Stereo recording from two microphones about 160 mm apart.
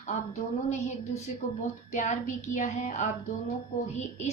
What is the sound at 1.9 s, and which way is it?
A woman's voice, 50° left (ahead or behind).